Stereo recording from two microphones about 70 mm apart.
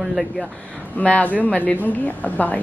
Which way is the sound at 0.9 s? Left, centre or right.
Centre.